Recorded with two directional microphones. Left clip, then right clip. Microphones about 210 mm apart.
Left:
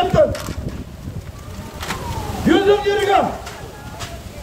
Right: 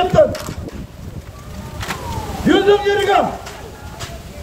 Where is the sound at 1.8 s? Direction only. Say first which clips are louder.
Right 1 dB; 30° left (ahead or behind).